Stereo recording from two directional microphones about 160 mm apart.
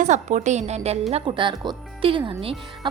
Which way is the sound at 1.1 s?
30° right (ahead or behind).